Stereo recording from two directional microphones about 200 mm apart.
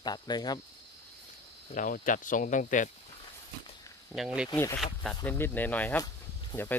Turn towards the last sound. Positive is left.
turn(degrees=10)  # may be behind; listen again after turning